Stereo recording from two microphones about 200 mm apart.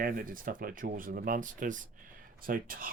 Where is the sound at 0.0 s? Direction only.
45° right (ahead or behind).